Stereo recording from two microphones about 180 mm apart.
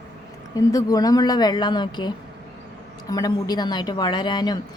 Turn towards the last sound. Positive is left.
turn(degrees=25)  # may be behind; listen again after turning